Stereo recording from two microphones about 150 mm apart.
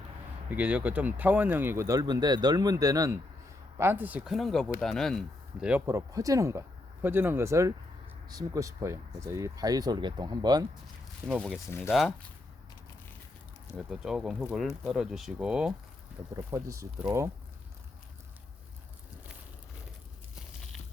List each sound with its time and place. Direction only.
0.5 s speech: 10° right (ahead or behind)
4.3 s speech: centre (ahead or behind)
5.8 s speech: 20° right (ahead or behind)
11.8 s speech: centre (ahead or behind)
13.7 s speech: 5° right (ahead or behind)
16.3 s speech: 20° right (ahead or behind)